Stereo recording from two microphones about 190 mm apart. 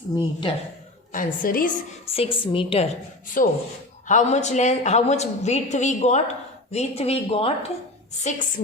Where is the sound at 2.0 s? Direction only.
30° left (ahead or behind).